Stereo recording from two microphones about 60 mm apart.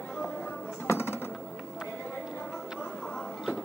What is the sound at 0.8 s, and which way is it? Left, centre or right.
Music, left.